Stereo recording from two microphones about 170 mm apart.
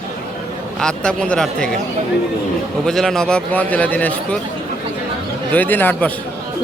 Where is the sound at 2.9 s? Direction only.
5° left (ahead or behind).